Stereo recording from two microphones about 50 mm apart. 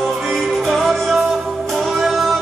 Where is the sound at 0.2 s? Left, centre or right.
Centre.